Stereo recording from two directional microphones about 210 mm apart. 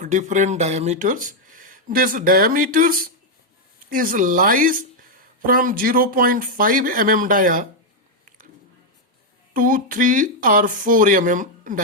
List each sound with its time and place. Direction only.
0.0 s speech: 35° right (ahead or behind)
9.5 s speech: 40° right (ahead or behind)